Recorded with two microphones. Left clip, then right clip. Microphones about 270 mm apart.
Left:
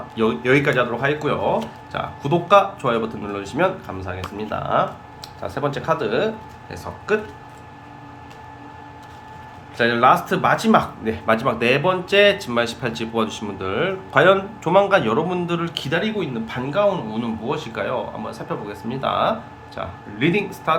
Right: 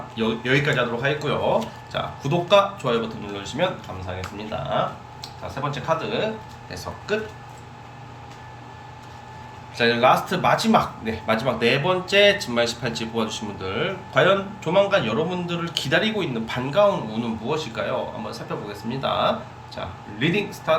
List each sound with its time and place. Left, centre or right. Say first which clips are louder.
0.2 s speech: left 4 dB; centre
6.7 s speech: left 5 dB; centre
9.7 s speech: left 2 dB; centre